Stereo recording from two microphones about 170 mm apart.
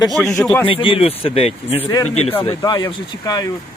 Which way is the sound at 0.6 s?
30° left (ahead or behind).